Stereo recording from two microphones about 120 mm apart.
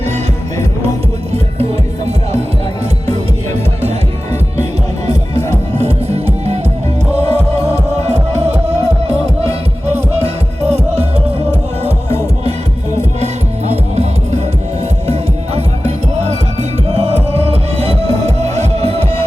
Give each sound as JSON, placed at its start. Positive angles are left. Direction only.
{"t": 5.0, "sound": "music", "side_deg": -60}
{"t": 9.8, "sound": "music", "side_deg": -60}
{"t": 13.1, "sound": "music", "side_deg": -65}